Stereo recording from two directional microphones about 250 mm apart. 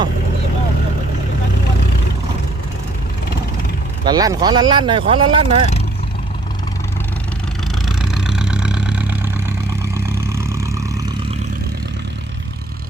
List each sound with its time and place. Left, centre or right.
4.0 s speech: centre
7.9 s vehicle: centre